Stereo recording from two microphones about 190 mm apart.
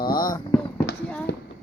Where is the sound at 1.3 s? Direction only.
65° left (ahead or behind).